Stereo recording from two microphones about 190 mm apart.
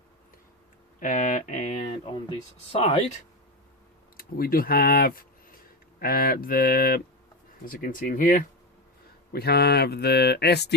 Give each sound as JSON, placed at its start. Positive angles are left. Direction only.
{"t": 0.9, "sound": "a sound", "side_deg": 45}
{"t": 2.7, "sound": "speech", "side_deg": 30}
{"t": 4.2, "sound": "speech", "side_deg": 50}
{"t": 9.3, "sound": "speech", "side_deg": 55}